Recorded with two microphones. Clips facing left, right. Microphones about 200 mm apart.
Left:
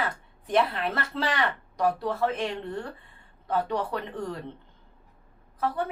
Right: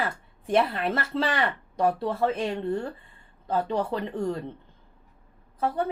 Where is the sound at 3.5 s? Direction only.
25° right (ahead or behind).